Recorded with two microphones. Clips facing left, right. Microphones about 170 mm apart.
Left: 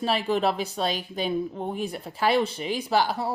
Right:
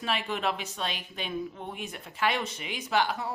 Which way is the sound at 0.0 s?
35° left (ahead or behind).